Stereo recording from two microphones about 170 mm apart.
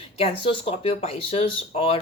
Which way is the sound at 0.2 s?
35° left (ahead or behind).